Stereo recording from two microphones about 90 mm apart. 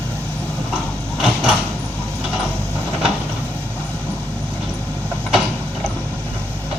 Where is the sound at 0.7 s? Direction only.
10° right (ahead or behind).